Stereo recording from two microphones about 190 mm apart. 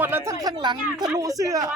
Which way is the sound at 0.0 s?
10° right (ahead or behind).